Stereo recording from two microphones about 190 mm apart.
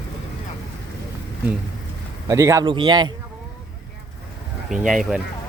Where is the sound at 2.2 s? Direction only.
15° right (ahead or behind).